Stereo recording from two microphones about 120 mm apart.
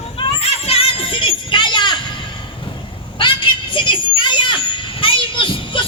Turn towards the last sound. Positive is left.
turn(degrees=45)  # may be behind; listen again after turning